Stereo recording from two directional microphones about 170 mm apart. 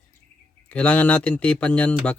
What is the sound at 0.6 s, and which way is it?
Speech, 10° left (ahead or behind).